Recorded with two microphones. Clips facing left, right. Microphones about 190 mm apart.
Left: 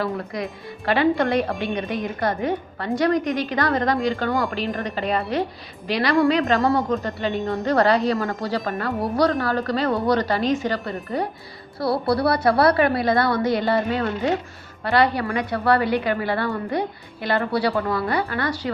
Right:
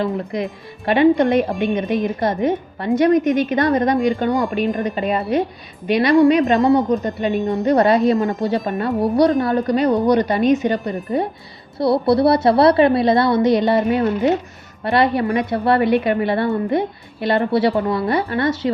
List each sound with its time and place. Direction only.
0.0 s a woman's voice: 20° right (ahead or behind)